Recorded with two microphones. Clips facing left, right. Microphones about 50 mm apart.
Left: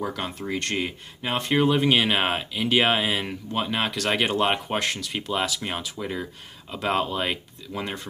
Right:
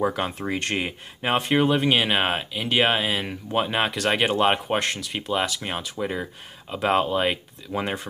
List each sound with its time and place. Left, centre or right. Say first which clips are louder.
0.0 s speech: right 5 dB; right
1.5 s speech: left 1 dB; centre
3.5 s speech: right 3 dB; centre